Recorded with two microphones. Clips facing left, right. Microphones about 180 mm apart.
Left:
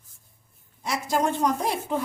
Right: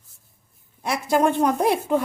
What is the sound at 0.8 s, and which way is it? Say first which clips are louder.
A woman's voice: right 5 dB; 60° right (ahead or behind).